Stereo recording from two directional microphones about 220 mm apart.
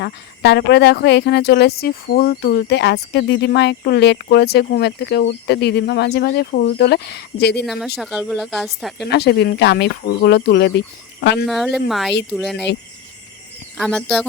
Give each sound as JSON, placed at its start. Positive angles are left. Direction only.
{"t": 0.0, "sound": "speech", "side_deg": 50}
{"t": 7.6, "sound": "speech", "side_deg": 0}
{"t": 9.0, "sound": "speech", "side_deg": 50}
{"t": 11.4, "sound": "speech", "side_deg": 0}
{"t": 13.7, "sound": "speech", "side_deg": 0}